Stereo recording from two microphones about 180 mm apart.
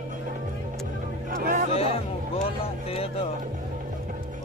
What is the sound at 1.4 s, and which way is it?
Music, 45° right (ahead or behind).